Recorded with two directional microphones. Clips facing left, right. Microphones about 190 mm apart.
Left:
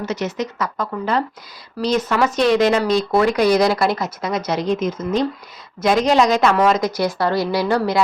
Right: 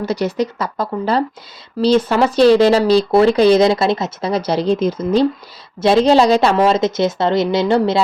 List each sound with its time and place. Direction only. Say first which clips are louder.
0.0 s a woman's voice: right 5 dB; 35° right (ahead or behind)